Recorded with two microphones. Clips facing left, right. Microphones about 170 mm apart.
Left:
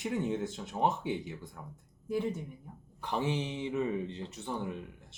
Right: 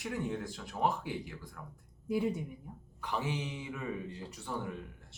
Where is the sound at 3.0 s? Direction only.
30° left (ahead or behind).